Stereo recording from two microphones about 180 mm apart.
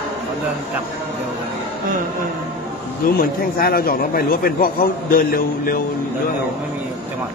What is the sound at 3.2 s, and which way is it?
A man's voice, 55° left (ahead or behind).